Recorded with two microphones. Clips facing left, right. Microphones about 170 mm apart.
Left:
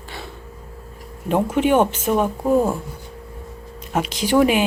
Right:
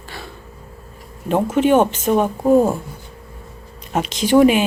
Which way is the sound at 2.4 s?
15° right (ahead or behind).